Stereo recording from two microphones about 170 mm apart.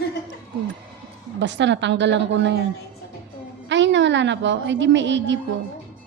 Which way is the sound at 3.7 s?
90° right.